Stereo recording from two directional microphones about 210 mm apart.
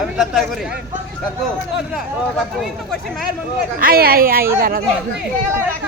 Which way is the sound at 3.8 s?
45° right (ahead or behind).